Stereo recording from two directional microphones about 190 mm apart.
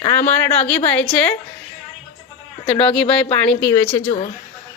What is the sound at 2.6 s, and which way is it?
Speech, 30° left (ahead or behind).